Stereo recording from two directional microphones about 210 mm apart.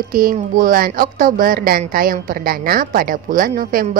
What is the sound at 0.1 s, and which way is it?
A woman's voice, 40° right (ahead or behind).